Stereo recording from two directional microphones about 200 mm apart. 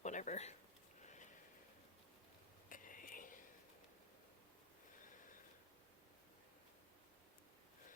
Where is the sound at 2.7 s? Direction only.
45° left (ahead or behind).